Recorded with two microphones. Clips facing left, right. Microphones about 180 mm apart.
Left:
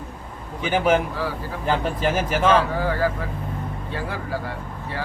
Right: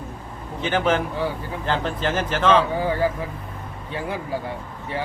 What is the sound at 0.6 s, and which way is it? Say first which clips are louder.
Speech: left 2 dB; 10° left (ahead or behind).